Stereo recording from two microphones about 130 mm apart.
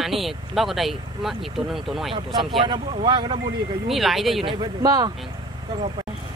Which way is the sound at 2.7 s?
35° right (ahead or behind).